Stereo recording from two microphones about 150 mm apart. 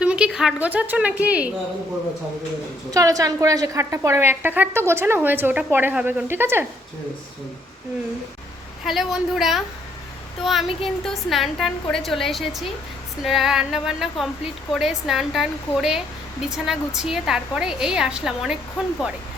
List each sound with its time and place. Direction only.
0.0 s a woman's voice: 5° right (ahead or behind)
2.9 s a woman's voice: 25° right (ahead or behind)
8.8 s a woman's voice: centre (ahead or behind)